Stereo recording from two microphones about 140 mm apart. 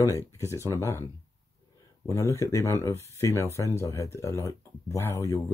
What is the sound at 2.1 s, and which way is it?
Speech, 20° left (ahead or behind).